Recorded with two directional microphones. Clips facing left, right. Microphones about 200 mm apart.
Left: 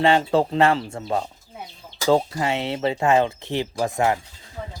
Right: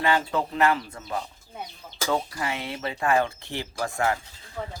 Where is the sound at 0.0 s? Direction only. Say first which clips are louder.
Left 6 dB; 25° left (ahead or behind).